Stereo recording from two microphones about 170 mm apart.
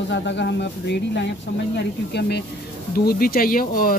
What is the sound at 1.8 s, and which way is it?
Speech, 80° left.